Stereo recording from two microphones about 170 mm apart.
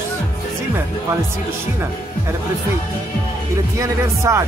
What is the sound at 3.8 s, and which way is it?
Speech, 15° right (ahead or behind).